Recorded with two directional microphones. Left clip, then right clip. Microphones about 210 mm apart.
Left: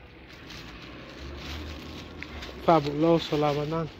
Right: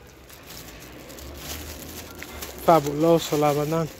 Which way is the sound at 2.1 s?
10° right (ahead or behind).